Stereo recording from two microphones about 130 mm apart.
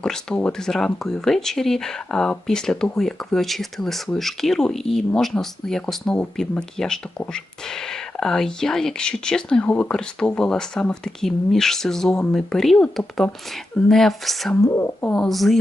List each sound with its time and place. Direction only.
0.0 s speech: 5° left (ahead or behind)
14.5 s a woman's voice: 20° left (ahead or behind)
15.1 s speech: 5° left (ahead or behind)